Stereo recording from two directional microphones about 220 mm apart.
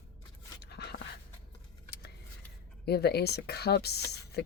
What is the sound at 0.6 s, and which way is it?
Dog, 50° left (ahead or behind).